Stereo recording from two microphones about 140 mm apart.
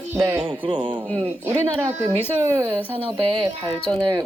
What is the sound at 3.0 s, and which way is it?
Speech, 40° right (ahead or behind).